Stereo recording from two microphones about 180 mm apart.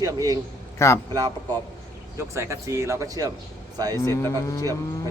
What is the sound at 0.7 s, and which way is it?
Speech, 15° left (ahead or behind).